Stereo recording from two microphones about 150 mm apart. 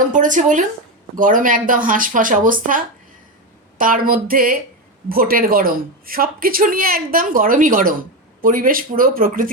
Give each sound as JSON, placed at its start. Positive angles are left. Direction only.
{"t": 0.1, "sound": "speech", "side_deg": -60}